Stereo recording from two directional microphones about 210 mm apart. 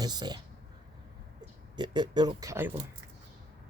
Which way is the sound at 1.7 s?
20° right (ahead or behind).